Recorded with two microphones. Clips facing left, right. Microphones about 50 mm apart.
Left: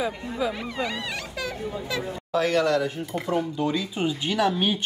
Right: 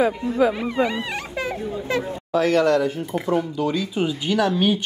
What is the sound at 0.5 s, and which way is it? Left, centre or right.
Speech, centre.